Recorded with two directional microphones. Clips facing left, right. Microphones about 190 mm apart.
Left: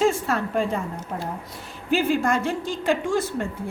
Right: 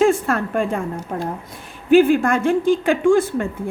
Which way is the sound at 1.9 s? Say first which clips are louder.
Right 8 dB; 55° right (ahead or behind).